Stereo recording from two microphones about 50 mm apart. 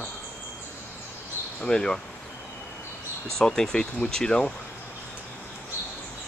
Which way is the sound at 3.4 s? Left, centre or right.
Centre.